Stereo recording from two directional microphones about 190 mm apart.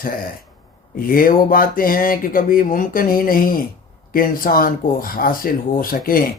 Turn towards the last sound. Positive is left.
turn(degrees=50)  # may be behind; listen again after turning